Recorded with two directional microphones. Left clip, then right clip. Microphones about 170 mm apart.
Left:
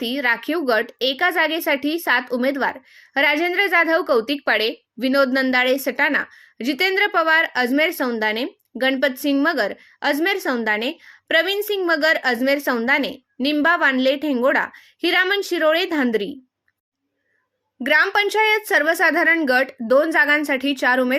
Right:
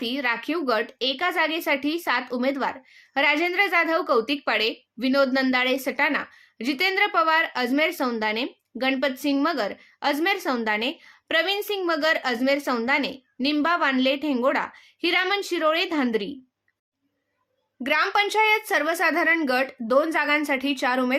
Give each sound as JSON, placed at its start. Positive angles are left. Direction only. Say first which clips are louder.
{"t": 0.0, "sound": "speech", "louder": "left 5 dB", "side_deg": 30}
{"t": 17.8, "sound": "speech", "louder": "left 5 dB", "side_deg": 30}